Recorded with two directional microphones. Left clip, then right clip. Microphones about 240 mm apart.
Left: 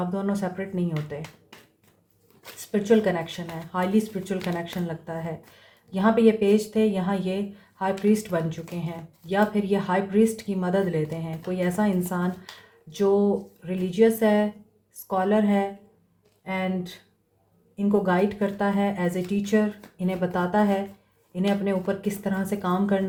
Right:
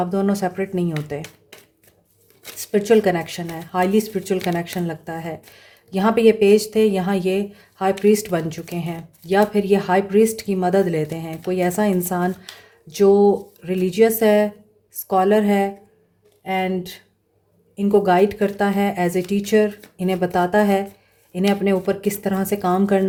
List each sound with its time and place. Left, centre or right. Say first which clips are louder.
0.0 s speech: right 7 dB; right
2.6 s speech: right 6 dB; right